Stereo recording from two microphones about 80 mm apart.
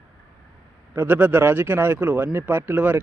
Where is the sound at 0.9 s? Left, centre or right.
Right.